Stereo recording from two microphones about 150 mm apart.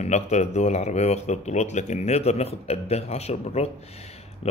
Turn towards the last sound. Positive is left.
turn(degrees=45)  # may be behind; listen again after turning